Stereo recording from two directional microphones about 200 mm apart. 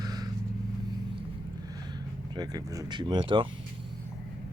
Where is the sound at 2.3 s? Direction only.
20° right (ahead or behind).